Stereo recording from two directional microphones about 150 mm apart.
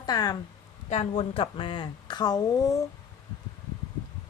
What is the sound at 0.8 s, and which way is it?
Speech, 45° left (ahead or behind).